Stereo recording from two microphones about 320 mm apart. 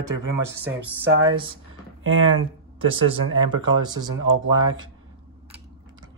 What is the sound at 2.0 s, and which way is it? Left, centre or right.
Speech, right.